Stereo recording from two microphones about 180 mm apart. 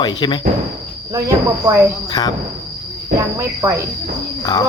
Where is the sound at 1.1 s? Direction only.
20° right (ahead or behind).